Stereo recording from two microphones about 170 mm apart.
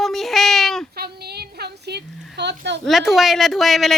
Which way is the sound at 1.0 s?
70° right (ahead or behind).